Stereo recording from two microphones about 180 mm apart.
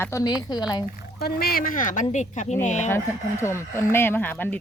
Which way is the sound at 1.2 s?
60° left (ahead or behind).